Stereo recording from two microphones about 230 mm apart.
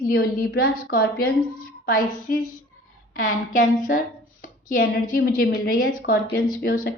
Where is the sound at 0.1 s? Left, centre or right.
Left.